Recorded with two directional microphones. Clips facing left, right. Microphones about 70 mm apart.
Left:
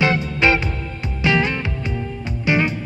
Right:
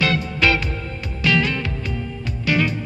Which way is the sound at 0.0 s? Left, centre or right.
Left.